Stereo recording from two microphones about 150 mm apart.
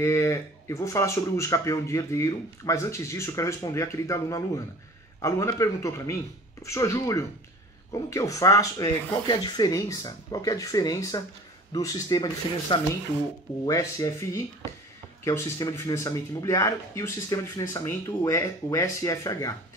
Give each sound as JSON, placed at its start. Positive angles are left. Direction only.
{"t": 0.0, "sound": "speech", "side_deg": 20}